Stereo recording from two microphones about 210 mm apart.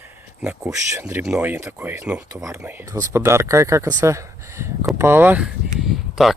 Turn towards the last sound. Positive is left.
turn(degrees=0)  # may be behind; listen again after turning